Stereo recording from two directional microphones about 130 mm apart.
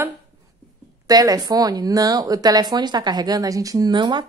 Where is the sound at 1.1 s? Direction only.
30° right (ahead or behind).